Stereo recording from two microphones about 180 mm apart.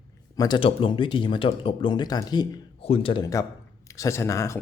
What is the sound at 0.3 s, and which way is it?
A man's voice, 25° left (ahead or behind).